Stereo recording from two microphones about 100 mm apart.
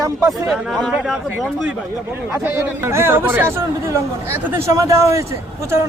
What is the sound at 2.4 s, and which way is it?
Speech, 25° right (ahead or behind).